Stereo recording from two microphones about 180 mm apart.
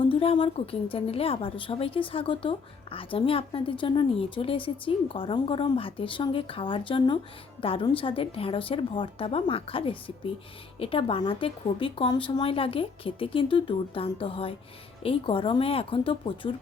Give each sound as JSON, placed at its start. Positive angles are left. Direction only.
{"t": 0.1, "sound": "a woman's voice", "side_deg": 30}